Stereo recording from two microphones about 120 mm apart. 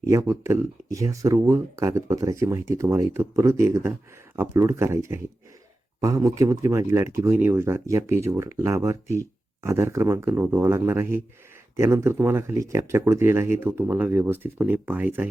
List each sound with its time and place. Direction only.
0.0 s speech: 25° right (ahead or behind)